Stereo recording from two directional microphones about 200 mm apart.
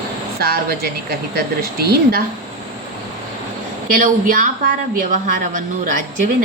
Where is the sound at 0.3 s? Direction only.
50° right (ahead or behind).